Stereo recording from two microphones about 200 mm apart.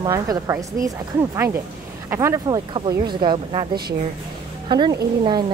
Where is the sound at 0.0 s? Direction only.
15° right (ahead or behind).